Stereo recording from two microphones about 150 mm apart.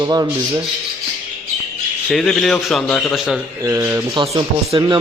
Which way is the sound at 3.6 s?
20° right (ahead or behind).